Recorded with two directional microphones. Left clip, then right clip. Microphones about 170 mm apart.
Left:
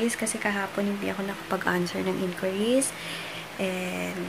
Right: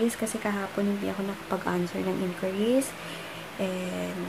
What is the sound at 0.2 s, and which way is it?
Speech, 10° right (ahead or behind).